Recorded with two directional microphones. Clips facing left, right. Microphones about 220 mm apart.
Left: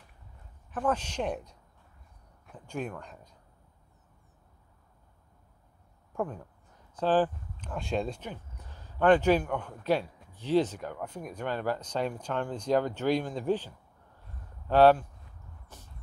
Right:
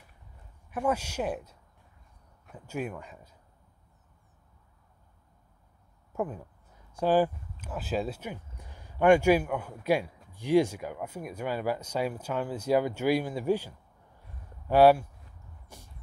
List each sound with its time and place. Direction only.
0.7 s speech: 10° right (ahead or behind)
6.1 s speech: 5° right (ahead or behind)
15.7 s a sound: 10° right (ahead or behind)